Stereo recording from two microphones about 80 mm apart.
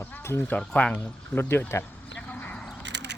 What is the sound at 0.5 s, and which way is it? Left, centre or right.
Speech, centre.